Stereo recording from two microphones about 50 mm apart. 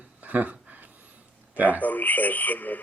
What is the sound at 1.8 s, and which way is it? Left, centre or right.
Speech, left.